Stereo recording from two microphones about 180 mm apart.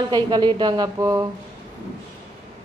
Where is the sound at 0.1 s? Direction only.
25° right (ahead or behind).